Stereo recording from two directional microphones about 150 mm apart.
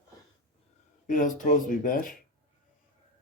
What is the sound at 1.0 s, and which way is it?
Speech, 60° left (ahead or behind).